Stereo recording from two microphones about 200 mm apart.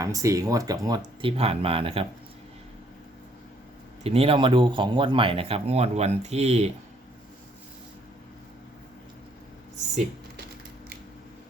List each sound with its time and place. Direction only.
0.0 s speech: 15° right (ahead or behind)
4.0 s speech: 30° right (ahead or behind)